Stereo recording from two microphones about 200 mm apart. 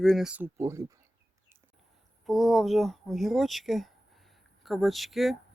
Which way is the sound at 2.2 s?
Centre (ahead or behind).